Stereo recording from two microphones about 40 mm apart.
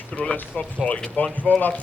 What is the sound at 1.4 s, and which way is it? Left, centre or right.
Speech, left.